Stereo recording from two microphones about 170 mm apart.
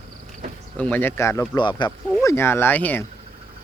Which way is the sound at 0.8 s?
10° left (ahead or behind).